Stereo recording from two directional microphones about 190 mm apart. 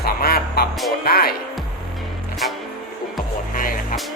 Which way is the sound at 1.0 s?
55° left (ahead or behind).